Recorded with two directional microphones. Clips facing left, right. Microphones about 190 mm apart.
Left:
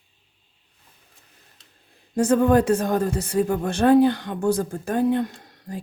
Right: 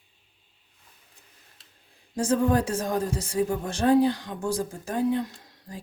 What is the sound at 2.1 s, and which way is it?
A woman's voice, 60° left (ahead or behind).